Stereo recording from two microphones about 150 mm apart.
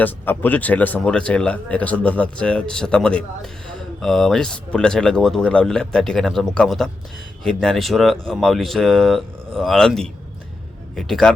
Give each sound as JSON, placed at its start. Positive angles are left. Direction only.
{"t": 0.0, "sound": "speech", "side_deg": 10}